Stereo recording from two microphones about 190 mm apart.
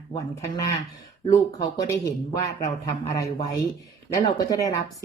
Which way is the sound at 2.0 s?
20° left (ahead or behind).